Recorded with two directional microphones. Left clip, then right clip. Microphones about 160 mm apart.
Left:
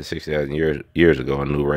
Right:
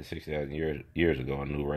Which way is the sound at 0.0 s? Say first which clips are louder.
Left 11 dB; 55° left (ahead or behind).